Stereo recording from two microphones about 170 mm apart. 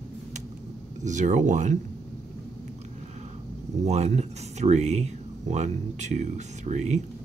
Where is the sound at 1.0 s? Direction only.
45° right (ahead or behind).